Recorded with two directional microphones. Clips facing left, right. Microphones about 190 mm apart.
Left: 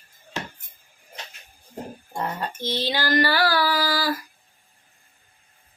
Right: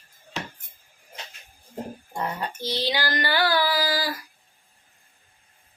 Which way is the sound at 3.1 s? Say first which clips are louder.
Left 3 dB; 20° right (ahead or behind).